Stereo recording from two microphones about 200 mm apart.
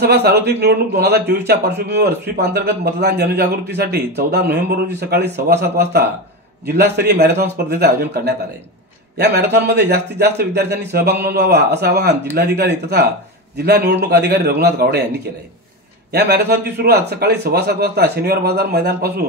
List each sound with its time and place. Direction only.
0.0 s a man's voice: 55° right (ahead or behind)
16.1 s a man's voice: 55° right (ahead or behind)